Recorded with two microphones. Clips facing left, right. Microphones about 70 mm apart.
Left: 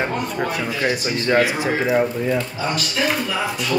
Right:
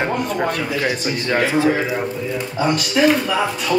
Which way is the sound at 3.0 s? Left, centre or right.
Centre.